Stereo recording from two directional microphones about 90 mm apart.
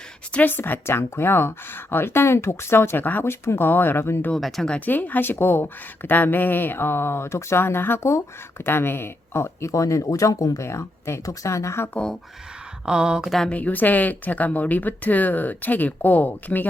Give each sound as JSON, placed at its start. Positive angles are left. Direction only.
{"t": 0.3, "sound": "speech", "side_deg": 20}
{"t": 4.4, "sound": "speech", "side_deg": 0}
{"t": 4.7, "sound": "speech", "side_deg": 20}
{"t": 12.8, "sound": "speech", "side_deg": -10}
{"t": 13.3, "sound": "speech", "side_deg": 10}